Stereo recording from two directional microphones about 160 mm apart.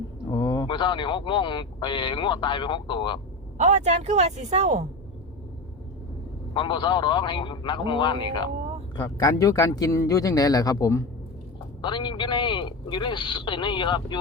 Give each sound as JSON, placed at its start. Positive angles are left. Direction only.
{"t": 0.3, "sound": "speech", "side_deg": 25}
{"t": 3.6, "sound": "speech", "side_deg": -45}
{"t": 6.5, "sound": "a man's voice", "side_deg": 30}